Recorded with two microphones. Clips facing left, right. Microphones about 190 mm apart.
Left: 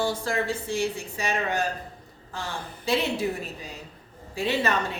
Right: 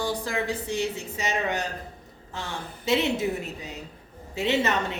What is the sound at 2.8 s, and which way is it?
A woman's voice, 20° right (ahead or behind).